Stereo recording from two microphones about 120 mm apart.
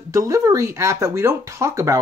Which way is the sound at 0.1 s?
25° right (ahead or behind).